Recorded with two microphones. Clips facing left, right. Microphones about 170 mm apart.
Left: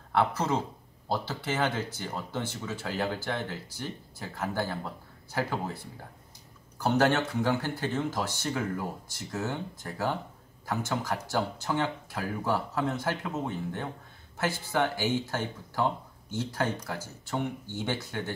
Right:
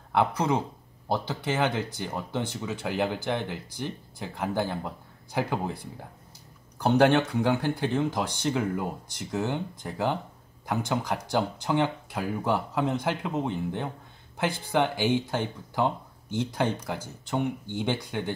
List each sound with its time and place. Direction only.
0.1 s speech: 15° right (ahead or behind)
6.8 s speech: 15° right (ahead or behind)